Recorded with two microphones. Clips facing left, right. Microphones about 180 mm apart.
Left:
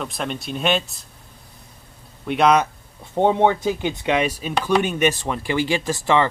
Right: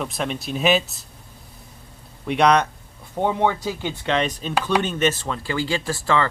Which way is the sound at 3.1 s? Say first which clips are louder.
Left 4 dB; 25° left (ahead or behind).